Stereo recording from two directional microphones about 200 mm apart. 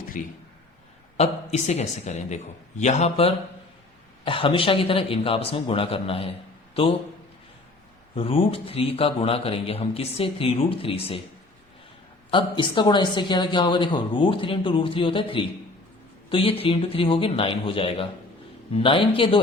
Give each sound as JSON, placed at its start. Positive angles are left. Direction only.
{"t": 0.1, "sound": "speech", "side_deg": 40}
{"t": 8.1, "sound": "speech", "side_deg": 25}
{"t": 12.3, "sound": "speech", "side_deg": 25}